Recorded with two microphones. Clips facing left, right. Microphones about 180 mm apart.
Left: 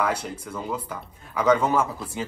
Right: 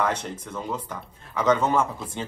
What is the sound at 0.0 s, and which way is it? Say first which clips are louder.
A man's voice: even; 10° left (ahead or behind).